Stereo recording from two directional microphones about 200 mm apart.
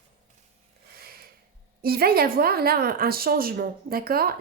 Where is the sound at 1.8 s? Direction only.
50° right (ahead or behind).